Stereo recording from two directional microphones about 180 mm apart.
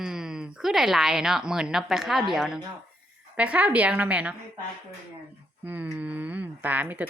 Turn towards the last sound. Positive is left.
turn(degrees=-10)  # may be behind; listen again after turning